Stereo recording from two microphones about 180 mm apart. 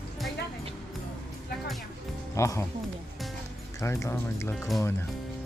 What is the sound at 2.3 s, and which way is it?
Speech, 15° left (ahead or behind).